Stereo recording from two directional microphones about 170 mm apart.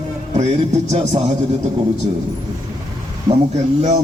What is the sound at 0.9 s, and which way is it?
Speech, 40° right (ahead or behind).